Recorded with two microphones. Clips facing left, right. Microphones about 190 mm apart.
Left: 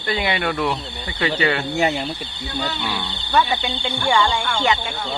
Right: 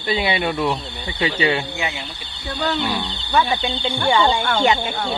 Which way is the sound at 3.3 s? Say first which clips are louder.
Even; 10° right (ahead or behind).